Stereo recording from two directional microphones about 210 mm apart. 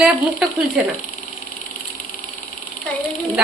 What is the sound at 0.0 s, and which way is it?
Speech, 5° right (ahead or behind).